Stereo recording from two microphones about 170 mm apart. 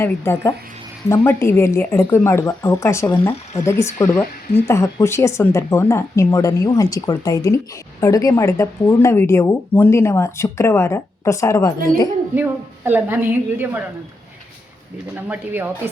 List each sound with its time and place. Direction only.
0.0 s speech: 15° left (ahead or behind)
12.3 s a woman's voice: 10° right (ahead or behind)
15.1 s a woman's voice: 10° right (ahead or behind)